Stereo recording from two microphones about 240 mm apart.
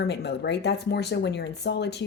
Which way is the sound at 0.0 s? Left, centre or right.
Left.